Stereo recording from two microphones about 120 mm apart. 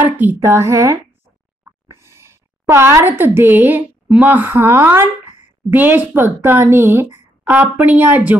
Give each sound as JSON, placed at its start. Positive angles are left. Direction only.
{"t": 0.0, "sound": "a woman's voice", "side_deg": -15}